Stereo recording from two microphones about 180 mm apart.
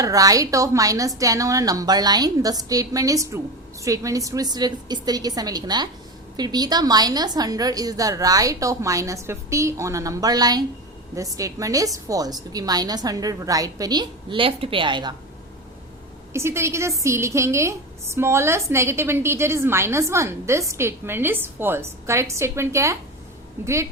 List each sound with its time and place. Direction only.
0.0 s a woman's voice: 20° right (ahead or behind)
16.3 s a woman's voice: 15° right (ahead or behind)